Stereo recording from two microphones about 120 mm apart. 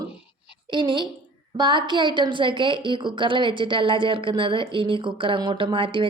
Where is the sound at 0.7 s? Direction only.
40° right (ahead or behind).